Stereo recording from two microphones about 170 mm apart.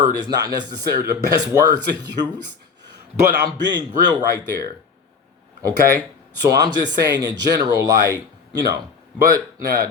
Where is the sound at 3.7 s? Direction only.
25° right (ahead or behind).